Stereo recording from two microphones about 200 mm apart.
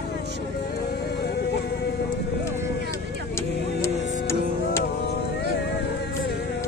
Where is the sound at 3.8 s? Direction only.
15° left (ahead or behind).